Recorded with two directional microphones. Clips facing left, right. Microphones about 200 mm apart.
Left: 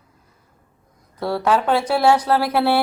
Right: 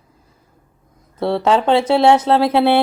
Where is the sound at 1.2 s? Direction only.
25° right (ahead or behind).